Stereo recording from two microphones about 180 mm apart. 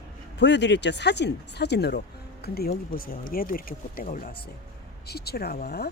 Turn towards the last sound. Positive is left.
turn(degrees=60)  # may be behind; listen again after turning